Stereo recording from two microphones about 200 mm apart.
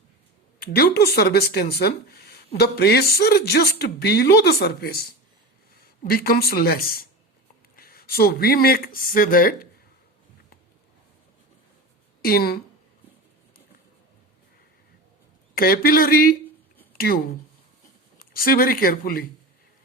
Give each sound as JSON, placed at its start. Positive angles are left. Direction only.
{"t": 0.6, "sound": "speech", "side_deg": 50}
{"t": 6.1, "sound": "speech", "side_deg": 50}
{"t": 12.2, "sound": "speech", "side_deg": 50}
{"t": 15.5, "sound": "speech", "side_deg": 50}
{"t": 18.2, "sound": "speech", "side_deg": 45}